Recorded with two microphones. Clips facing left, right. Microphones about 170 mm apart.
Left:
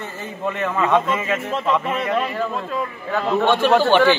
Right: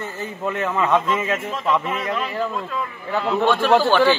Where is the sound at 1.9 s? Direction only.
35° left (ahead or behind).